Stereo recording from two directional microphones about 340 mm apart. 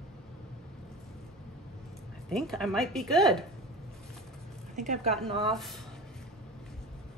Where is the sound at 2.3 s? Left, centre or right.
Centre.